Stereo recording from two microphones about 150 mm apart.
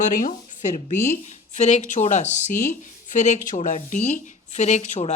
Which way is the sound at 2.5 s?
15° left (ahead or behind).